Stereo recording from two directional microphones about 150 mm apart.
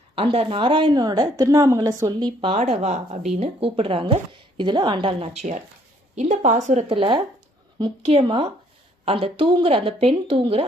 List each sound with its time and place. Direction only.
0.2 s a woman's voice: 40° right (ahead or behind)
2.6 s a woman's voice: 50° right (ahead or behind)
6.8 s speech: 35° right (ahead or behind)